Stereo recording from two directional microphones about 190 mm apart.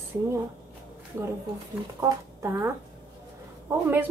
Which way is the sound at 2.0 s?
15° right (ahead or behind).